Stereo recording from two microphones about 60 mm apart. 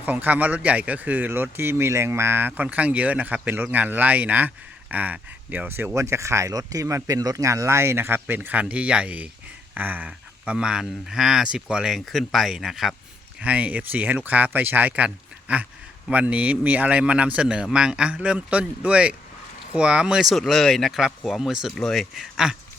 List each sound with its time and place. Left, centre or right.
0.0 s a man's voice: right
2.6 s a man's voice: right
5.6 s speech: right
5.9 s speech: right
6.5 s speech: right
8.4 s a man's voice: right
10.1 s speech: centre
11.9 s speech: centre
13.4 s a man's voice: right
20.2 s speech: centre